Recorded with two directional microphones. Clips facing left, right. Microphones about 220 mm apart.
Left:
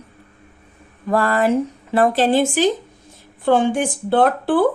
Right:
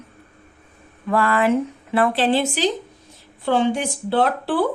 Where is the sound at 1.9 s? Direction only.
40° left (ahead or behind).